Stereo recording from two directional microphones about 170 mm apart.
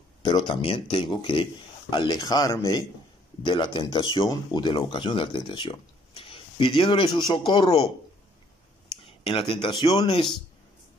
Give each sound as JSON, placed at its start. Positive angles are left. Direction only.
{"t": 0.2, "sound": "speech", "side_deg": 25}
{"t": 9.0, "sound": "speech", "side_deg": 30}